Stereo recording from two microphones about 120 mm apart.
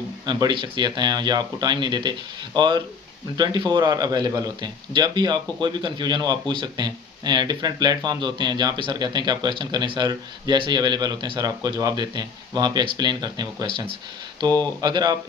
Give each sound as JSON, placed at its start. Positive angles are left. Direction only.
{"t": 0.3, "sound": "speech", "side_deg": -40}
{"t": 14.8, "sound": "speech", "side_deg": -35}